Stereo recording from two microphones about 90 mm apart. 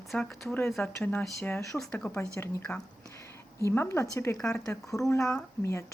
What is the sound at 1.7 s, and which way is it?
A woman's voice, 5° left (ahead or behind).